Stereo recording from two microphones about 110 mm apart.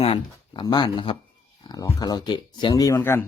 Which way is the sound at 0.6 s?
40° left (ahead or behind).